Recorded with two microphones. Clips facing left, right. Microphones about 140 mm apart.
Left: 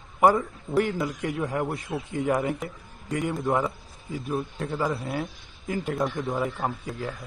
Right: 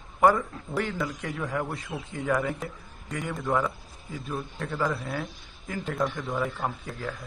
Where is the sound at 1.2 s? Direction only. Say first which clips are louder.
Left 5 dB; 25° left (ahead or behind).